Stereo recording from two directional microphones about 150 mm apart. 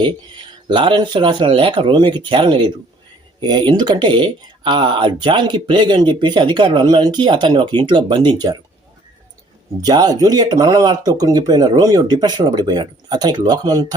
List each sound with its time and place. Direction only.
0.7 s speech: 30° right (ahead or behind)
9.8 s speech: 25° right (ahead or behind)